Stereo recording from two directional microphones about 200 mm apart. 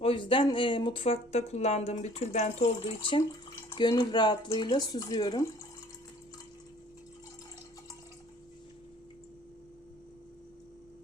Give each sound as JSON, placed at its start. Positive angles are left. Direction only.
{"t": 0.0, "sound": "speech", "side_deg": 25}